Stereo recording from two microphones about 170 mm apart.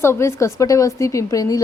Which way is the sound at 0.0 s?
15° left (ahead or behind).